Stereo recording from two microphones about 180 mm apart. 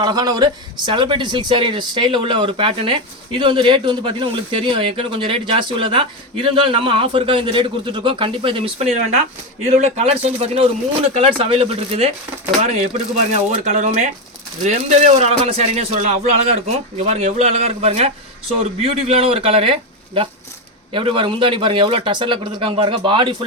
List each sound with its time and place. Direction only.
0.0 s a man's voice: 20° right (ahead or behind)
13.5 s a man's voice: 40° right (ahead or behind)